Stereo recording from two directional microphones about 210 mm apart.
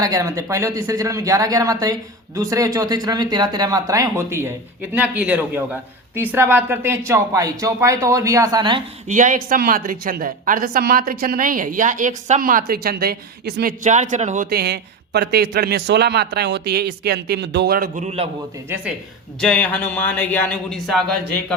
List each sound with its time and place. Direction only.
0.0 s speech: 15° right (ahead or behind)
9.0 s speech: 35° right (ahead or behind)
14.5 s a man's voice: 50° right (ahead or behind); by 18.3 s 30° right (ahead or behind)
19.4 s speech: 5° left (ahead or behind)